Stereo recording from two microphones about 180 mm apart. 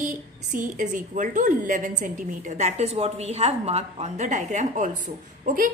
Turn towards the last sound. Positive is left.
turn(degrees=-50)  # may be behind; listen again after turning